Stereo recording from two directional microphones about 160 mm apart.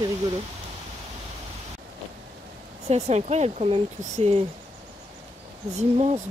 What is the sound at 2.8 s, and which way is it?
Speech, 45° right (ahead or behind).